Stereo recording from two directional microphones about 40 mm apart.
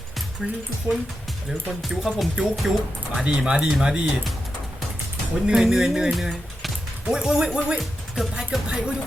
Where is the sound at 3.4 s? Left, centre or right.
Centre.